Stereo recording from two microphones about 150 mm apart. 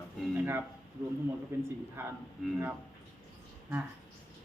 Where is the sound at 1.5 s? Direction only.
15° right (ahead or behind).